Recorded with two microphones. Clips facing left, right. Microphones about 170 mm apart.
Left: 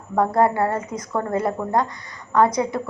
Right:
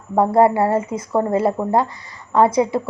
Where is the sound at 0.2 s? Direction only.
25° right (ahead or behind).